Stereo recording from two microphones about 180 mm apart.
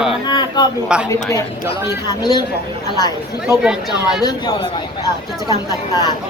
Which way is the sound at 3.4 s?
5° right (ahead or behind).